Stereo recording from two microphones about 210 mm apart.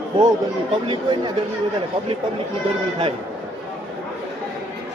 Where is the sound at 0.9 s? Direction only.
20° right (ahead or behind).